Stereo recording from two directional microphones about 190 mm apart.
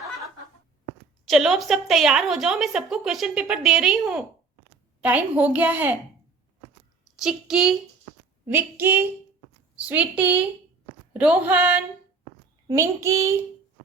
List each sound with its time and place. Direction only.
1.3 s a woman's voice: centre (ahead or behind)
7.2 s a woman's voice: 5° right (ahead or behind)